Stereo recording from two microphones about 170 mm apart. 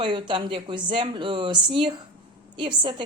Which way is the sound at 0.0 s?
30° right (ahead or behind).